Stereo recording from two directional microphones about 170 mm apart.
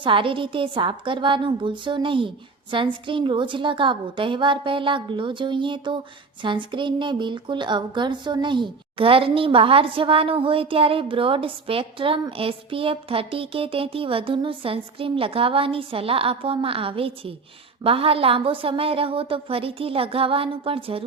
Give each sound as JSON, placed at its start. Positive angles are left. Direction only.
{"t": 0.0, "sound": "a woman's voice", "side_deg": -30}